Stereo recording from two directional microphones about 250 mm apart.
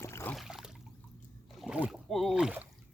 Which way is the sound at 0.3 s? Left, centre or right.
Centre.